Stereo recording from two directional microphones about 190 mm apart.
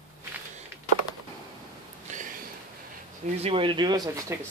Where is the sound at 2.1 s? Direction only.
40° right (ahead or behind).